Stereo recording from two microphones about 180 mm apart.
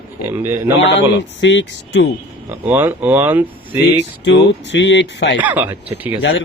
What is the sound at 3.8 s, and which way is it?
Speech, 80° left.